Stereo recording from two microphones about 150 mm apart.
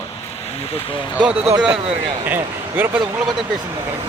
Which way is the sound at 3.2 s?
Centre (ahead or behind).